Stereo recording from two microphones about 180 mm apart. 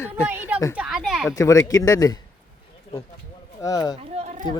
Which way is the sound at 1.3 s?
15° left (ahead or behind).